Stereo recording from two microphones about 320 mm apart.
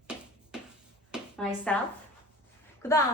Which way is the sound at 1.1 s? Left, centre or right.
Centre.